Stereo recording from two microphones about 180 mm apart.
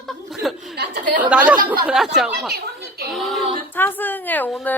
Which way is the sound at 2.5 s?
60° right (ahead or behind).